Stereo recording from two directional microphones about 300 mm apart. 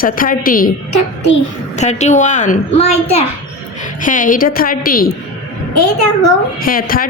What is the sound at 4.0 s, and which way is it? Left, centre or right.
A woman's voice, left.